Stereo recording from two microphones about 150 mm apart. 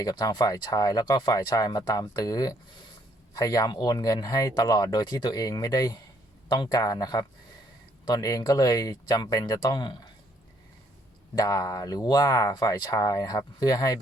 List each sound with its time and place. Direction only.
0.0 s speech: 25° left (ahead or behind)
11.3 s speech: 25° left (ahead or behind)